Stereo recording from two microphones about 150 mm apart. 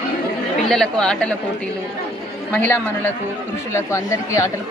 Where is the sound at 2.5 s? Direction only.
10° left (ahead or behind).